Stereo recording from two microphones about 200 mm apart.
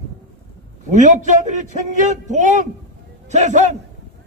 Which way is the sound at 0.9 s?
40° right (ahead or behind).